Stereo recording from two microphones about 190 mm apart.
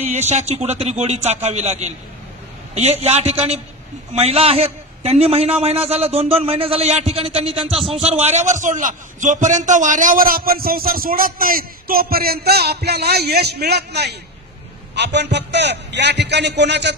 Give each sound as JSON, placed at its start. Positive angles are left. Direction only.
{"t": 0.0, "sound": "a man's voice", "side_deg": -35}
{"t": 7.7, "sound": "a man's voice", "side_deg": 0}
{"t": 8.0, "sound": "a man's voice", "side_deg": -35}